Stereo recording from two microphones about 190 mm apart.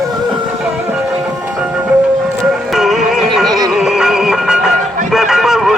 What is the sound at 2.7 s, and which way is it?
Music, centre (ahead or behind).